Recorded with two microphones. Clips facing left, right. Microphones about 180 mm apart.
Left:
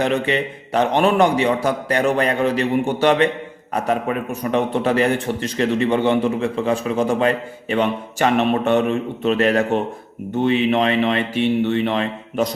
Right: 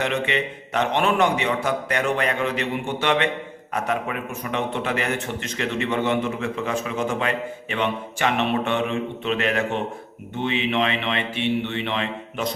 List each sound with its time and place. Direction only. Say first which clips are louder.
0.0 s a man's voice: left 5 dB; 35° left (ahead or behind)